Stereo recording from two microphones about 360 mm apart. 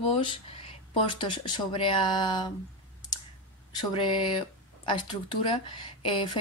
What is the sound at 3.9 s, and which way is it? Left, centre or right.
Speech, centre.